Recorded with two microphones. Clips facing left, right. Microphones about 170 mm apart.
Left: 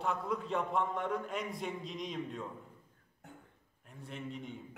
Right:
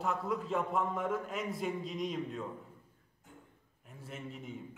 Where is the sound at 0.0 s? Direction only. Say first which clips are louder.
Right 1 dB; centre (ahead or behind).